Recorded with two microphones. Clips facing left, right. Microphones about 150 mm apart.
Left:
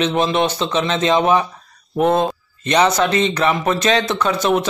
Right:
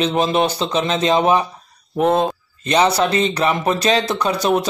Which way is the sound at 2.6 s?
30° right (ahead or behind).